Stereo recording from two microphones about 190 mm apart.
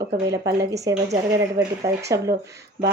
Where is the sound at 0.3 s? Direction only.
20° right (ahead or behind).